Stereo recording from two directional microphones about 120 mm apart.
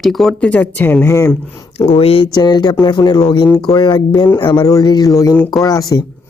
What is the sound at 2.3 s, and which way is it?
Speech, 35° left (ahead or behind).